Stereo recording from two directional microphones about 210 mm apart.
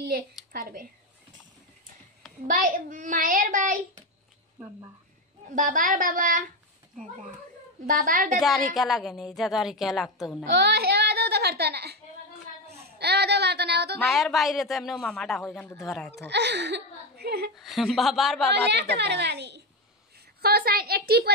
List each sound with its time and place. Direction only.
0.5 s speech: 40° right (ahead or behind)
2.4 s a child's voice: 40° right (ahead or behind)
5.5 s a child's voice: 40° right (ahead or behind)
7.8 s a child's voice: 40° right (ahead or behind)
8.4 s a woman's voice: centre (ahead or behind)
10.5 s a child's voice: 50° right (ahead or behind)
14.0 s a woman's voice: centre (ahead or behind)
16.3 s a woman's voice: 55° right (ahead or behind)
17.6 s a woman's voice: centre (ahead or behind)
18.5 s a woman's voice: 55° right (ahead or behind)